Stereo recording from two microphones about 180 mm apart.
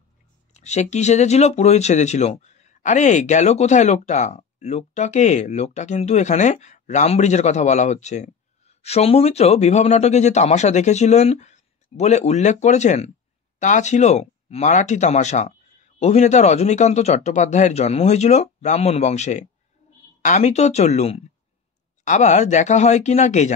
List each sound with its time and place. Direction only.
0.5 s speech: 40° left (ahead or behind)